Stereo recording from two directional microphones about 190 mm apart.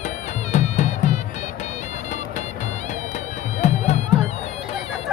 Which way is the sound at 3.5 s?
35° left (ahead or behind).